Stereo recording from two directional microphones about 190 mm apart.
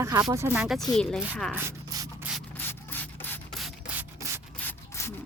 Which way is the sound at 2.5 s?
10° left (ahead or behind).